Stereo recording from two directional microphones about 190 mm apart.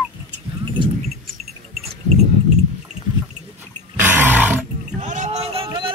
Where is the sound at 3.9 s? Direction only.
10° right (ahead or behind).